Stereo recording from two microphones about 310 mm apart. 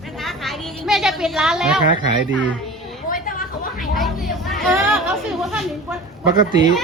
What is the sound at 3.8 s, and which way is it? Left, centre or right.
A woman's voice, centre.